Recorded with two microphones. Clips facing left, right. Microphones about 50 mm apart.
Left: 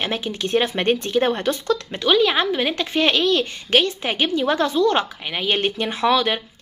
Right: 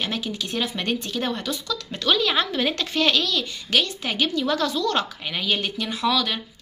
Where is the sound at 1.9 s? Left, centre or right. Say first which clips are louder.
Left 3 dB; centre.